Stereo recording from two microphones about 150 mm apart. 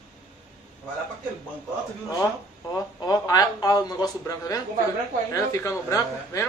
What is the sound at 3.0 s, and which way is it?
A man's voice, 25° left (ahead or behind).